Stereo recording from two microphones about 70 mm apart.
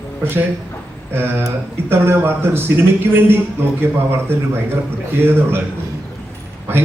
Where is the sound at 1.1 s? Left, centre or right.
Right.